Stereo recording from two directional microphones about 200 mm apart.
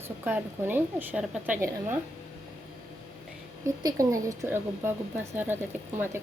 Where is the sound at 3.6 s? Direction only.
15° right (ahead or behind).